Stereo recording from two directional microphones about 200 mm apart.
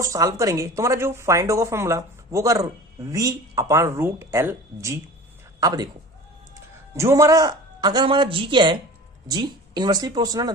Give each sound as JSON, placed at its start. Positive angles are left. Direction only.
{"t": 0.0, "sound": "a man's voice", "side_deg": -15}
{"t": 6.9, "sound": "speech", "side_deg": -15}